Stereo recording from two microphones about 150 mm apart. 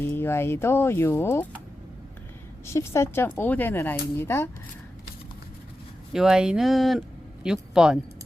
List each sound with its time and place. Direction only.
0.0 s speech: 15° left (ahead or behind)
2.6 s speech: 20° left (ahead or behind)
6.1 s a man's voice: 5° right (ahead or behind)